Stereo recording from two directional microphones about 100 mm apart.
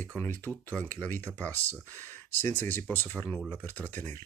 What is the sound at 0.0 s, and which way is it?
Speech, 20° left (ahead or behind).